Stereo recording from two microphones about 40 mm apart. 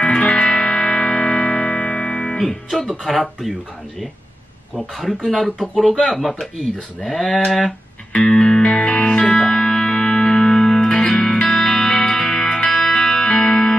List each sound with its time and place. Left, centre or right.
0.0 s music: left
3.0 s speech: centre
4.7 s speech: centre
7.3 s speech: centre
8.1 s music: left
8.6 s music: left